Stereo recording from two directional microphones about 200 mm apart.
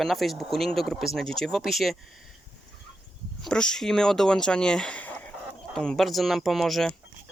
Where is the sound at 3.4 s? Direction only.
5° left (ahead or behind).